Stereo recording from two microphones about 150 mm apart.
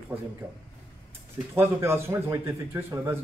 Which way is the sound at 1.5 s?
15° right (ahead or behind).